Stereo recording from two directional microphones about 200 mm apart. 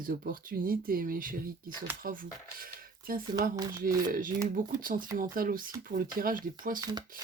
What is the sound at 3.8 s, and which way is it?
Speech, 45° right (ahead or behind).